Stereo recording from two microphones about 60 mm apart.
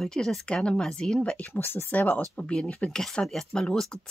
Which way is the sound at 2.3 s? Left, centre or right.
Centre.